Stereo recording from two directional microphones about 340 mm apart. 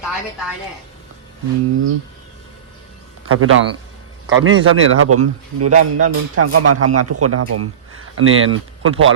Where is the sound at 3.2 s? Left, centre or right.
Right.